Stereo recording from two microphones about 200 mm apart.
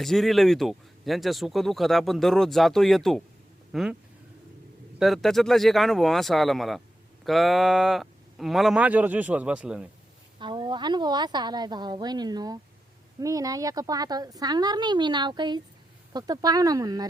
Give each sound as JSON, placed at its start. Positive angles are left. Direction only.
{"t": 0.0, "sound": "speech", "side_deg": 0}
{"t": 4.9, "sound": "speech", "side_deg": 0}
{"t": 10.4, "sound": "a woman's voice", "side_deg": -25}